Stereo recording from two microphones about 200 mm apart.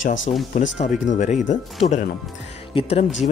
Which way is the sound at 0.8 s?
35° left (ahead or behind).